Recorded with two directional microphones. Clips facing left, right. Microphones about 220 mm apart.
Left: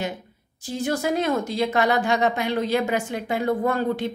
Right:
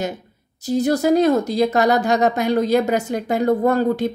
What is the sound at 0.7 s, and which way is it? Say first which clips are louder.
A woman's voice: right 8 dB; 40° right (ahead or behind).